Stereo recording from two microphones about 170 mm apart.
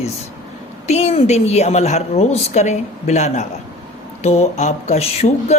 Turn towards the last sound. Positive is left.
turn(degrees=40)  # may be behind; listen again after turning